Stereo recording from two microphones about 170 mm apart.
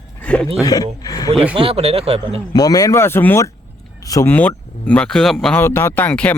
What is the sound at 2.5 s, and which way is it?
Speech, 20° left (ahead or behind).